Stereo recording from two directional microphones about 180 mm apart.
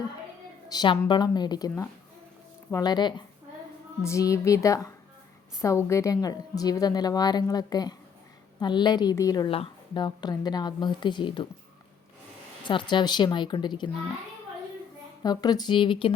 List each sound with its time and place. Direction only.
0.7 s a woman's voice: 25° left (ahead or behind)
12.6 s a woman's voice: 25° left (ahead or behind)
15.2 s a woman's voice: 20° left (ahead or behind)